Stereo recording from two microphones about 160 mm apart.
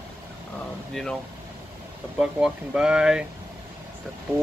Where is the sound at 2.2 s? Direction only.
5° right (ahead or behind).